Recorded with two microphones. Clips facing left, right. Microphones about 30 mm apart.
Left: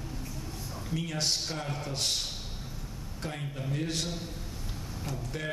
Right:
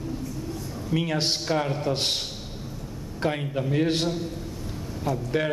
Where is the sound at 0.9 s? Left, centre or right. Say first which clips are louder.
Right 7 dB; right.